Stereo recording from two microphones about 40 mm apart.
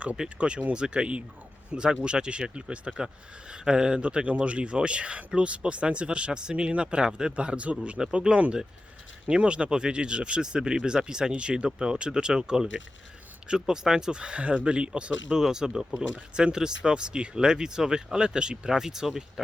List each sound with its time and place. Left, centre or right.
0.3 s speech: right
7.3 s speech: right
8.0 s speech: centre
9.4 s speech: right
15.4 s speech: centre